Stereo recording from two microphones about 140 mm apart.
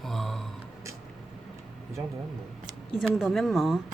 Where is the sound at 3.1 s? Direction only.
Centre (ahead or behind).